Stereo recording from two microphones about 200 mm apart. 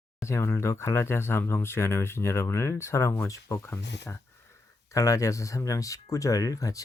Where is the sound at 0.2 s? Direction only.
15° left (ahead or behind).